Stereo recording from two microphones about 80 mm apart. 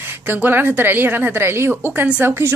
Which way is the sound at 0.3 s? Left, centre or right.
Right.